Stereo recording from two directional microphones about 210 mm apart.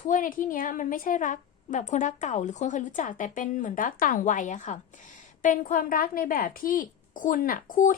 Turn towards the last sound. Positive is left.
turn(degrees=40)  # may be behind; listen again after turning